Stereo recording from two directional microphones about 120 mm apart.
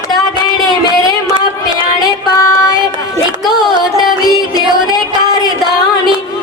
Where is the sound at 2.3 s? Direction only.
25° left (ahead or behind).